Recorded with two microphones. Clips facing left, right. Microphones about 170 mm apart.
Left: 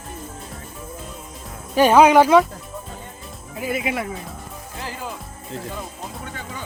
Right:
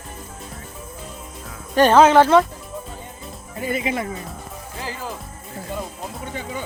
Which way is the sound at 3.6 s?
5° left (ahead or behind).